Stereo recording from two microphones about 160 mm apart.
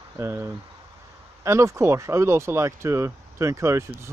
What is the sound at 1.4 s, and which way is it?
Speech, 20° right (ahead or behind).